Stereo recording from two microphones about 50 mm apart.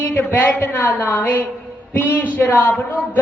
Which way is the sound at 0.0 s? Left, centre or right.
Left.